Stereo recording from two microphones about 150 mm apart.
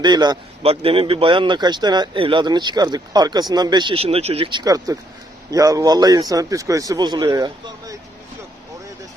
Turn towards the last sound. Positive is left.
turn(degrees=-25)  # may be behind; listen again after turning